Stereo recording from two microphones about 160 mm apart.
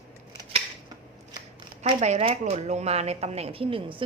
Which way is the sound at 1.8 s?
40° right (ahead or behind).